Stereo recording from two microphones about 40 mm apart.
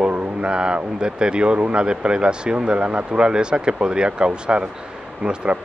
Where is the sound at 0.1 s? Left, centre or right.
Right.